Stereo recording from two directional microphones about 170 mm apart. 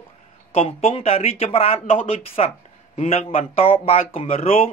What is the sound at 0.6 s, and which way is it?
Speech, 35° left (ahead or behind).